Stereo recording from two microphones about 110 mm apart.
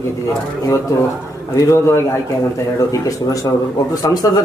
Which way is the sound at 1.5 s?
25° left (ahead or behind).